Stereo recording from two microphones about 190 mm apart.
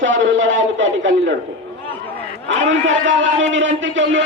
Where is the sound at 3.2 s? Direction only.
80° right.